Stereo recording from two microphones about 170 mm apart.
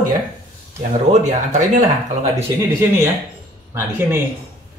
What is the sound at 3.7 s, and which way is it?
Speech, 15° right (ahead or behind).